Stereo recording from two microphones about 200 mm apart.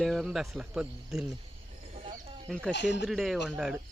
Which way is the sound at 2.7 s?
60° left (ahead or behind).